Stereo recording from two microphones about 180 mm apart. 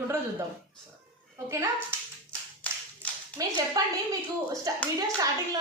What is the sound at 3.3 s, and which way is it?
A woman's voice, 20° right (ahead or behind).